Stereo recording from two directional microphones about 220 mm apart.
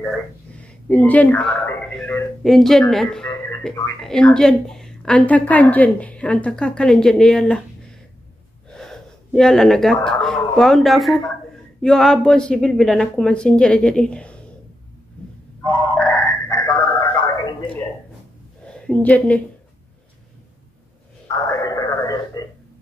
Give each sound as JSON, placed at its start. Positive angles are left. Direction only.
{"t": 0.8, "sound": "a woman's voice", "side_deg": 5}
{"t": 8.6, "sound": "gasp", "side_deg": 5}
{"t": 10.0, "sound": "a woman's voice", "side_deg": 5}
{"t": 15.6, "sound": "a sound", "side_deg": 15}
{"t": 18.7, "sound": "a woman's voice", "side_deg": 5}
{"t": 21.3, "sound": "a sound", "side_deg": 15}